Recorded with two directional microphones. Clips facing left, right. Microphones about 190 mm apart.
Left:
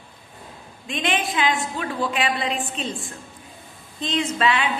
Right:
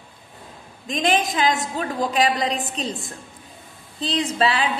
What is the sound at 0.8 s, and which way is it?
A woman's voice, 40° right (ahead or behind).